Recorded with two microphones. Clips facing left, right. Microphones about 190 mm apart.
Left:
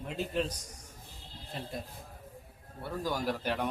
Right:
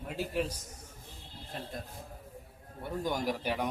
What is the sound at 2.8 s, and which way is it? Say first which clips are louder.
Speech: right 1 dB; 20° right (ahead or behind).